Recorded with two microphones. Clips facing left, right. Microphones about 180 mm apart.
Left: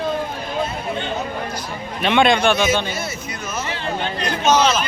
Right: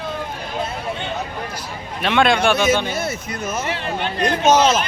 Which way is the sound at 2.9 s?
60° right (ahead or behind).